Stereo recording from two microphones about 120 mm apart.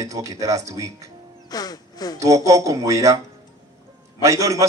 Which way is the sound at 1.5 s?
35° left (ahead or behind).